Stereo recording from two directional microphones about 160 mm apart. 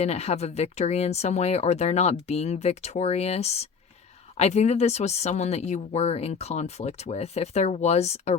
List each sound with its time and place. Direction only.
0.0 s speech: 40° left (ahead or behind)